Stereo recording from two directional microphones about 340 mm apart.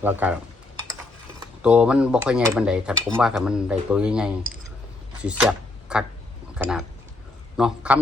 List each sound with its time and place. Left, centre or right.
0.0 s cutlery: centre
1.6 s cutlery: centre
5.2 s a man's voice: centre